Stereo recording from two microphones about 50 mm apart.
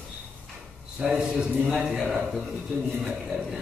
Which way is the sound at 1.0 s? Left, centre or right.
Centre.